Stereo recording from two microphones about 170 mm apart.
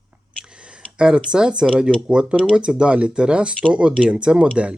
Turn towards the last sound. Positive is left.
turn(degrees=-5)  # may be behind; listen again after turning